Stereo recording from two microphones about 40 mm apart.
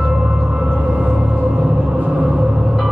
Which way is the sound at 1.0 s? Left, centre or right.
Right.